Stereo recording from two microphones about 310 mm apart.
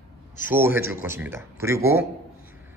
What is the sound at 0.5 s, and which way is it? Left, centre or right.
A man's voice, centre.